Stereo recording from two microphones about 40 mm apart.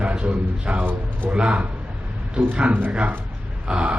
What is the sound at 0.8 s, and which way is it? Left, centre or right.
Speech, right.